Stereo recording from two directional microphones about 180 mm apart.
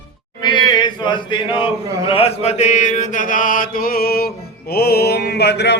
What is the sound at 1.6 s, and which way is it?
Mantra, 30° left (ahead or behind).